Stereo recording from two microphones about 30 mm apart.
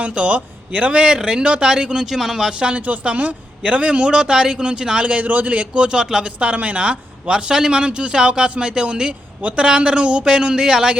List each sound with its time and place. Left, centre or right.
0.1 s a man's voice: right
0.3 s a man's voice: right
2.0 s speech: centre
2.5 s a man's voice: right
4.6 s a man's voice: right
5.2 s a man's voice: right
5.5 s a man's voice: right
6.0 s speech: right
6.2 s a man's voice: right
9.4 s a woman's voice: right
9.6 s a man's voice: right
10.2 s speech: right